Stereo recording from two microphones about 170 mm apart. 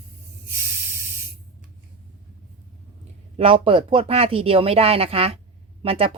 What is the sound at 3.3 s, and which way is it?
Speech, 30° right (ahead or behind).